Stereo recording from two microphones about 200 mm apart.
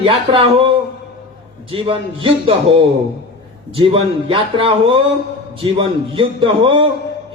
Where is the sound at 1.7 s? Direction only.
25° right (ahead or behind).